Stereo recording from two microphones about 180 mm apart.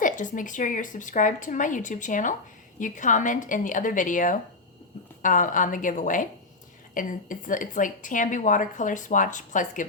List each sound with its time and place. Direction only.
0.0 s speech: 45° left (ahead or behind)